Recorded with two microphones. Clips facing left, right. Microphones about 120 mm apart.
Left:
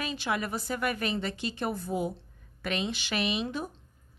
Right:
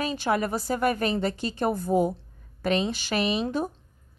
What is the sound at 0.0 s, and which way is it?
Speech, 40° right (ahead or behind).